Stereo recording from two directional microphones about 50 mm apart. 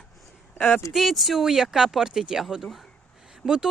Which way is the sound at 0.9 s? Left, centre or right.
Centre.